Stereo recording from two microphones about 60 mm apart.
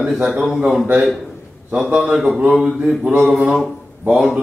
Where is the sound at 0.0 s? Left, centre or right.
Centre.